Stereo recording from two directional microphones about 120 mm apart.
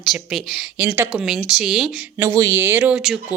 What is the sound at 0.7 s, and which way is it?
Speech, 20° right (ahead or behind).